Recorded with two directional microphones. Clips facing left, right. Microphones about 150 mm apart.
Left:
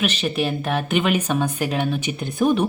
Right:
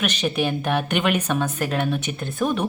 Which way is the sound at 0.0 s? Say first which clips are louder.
Left 1 dB; 5° left (ahead or behind).